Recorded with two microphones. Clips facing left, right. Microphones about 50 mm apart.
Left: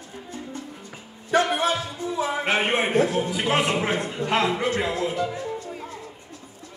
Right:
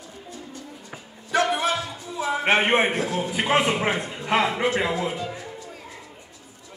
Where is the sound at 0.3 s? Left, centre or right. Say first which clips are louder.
Left 4 dB; left.